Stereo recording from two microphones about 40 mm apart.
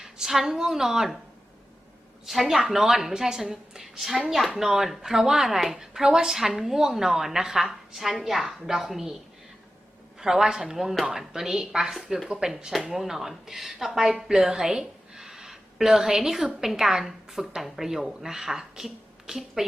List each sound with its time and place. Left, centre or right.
0.0 s a woman's voice: centre
2.2 s a woman's voice: centre
10.2 s a woman's voice: centre